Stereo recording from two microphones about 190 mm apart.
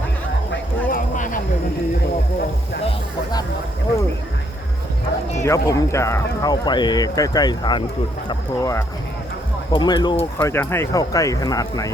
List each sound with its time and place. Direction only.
0.9 s a sound: 45° left (ahead or behind)
5.4 s speech: 15° left (ahead or behind)
10.4 s speech: 10° left (ahead or behind)